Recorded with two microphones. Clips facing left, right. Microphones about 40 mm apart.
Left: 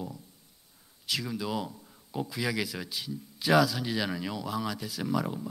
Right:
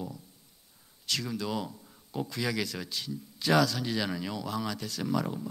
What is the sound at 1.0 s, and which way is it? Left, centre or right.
Speech, centre.